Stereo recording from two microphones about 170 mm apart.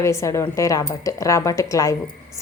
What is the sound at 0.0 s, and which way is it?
A woman's voice, 15° left (ahead or behind).